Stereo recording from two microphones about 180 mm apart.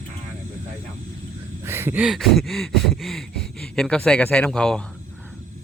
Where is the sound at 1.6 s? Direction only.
15° right (ahead or behind); by 4.8 s 5° left (ahead or behind).